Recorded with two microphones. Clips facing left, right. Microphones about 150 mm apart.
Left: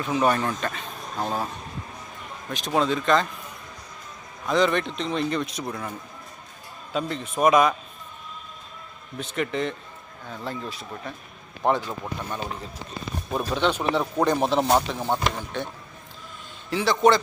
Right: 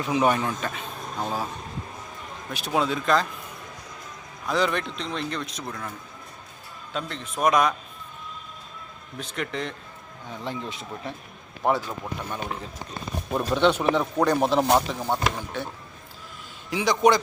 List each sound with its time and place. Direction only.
0.0 s speech: 15° right (ahead or behind)
2.5 s speech: 5° right (ahead or behind)
4.4 s speech: centre (ahead or behind)
6.9 s speech: 5° left (ahead or behind)
9.1 s speech: centre (ahead or behind)
10.4 s speech: 20° right (ahead or behind)
11.6 s speech: 5° right (ahead or behind)
13.3 s speech: 10° left (ahead or behind)
13.7 s speech: 10° right (ahead or behind)
13.9 s speech: 10° left (ahead or behind)
14.3 s speech: 5° right (ahead or behind)